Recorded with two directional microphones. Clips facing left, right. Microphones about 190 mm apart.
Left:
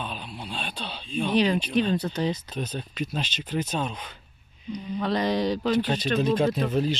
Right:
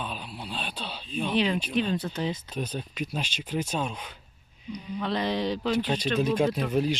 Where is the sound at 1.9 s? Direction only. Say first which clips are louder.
Left 3 dB; 40° left (ahead or behind).